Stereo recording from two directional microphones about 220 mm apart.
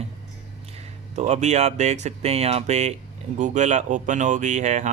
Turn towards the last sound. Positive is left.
turn(degrees=-30)  # may be behind; listen again after turning